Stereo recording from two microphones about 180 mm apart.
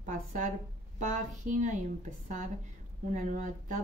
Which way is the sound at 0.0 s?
45° right (ahead or behind).